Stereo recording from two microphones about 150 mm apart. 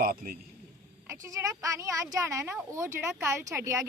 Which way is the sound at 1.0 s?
20° right (ahead or behind).